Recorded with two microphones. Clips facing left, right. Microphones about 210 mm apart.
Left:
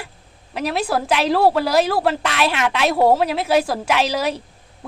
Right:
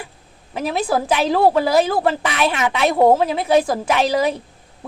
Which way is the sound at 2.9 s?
20° right (ahead or behind).